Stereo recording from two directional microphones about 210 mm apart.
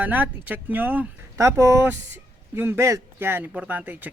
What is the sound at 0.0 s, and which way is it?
Speech, 10° right (ahead or behind).